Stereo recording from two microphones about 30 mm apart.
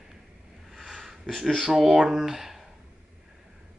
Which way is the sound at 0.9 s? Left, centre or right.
Centre.